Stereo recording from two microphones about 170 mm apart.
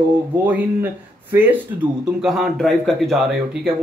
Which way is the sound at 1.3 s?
10° right (ahead or behind).